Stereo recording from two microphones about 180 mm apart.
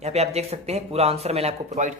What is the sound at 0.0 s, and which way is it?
A man's voice, 35° right (ahead or behind).